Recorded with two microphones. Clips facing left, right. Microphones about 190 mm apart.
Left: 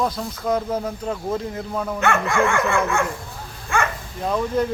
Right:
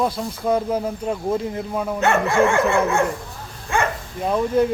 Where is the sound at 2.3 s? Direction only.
25° right (ahead or behind).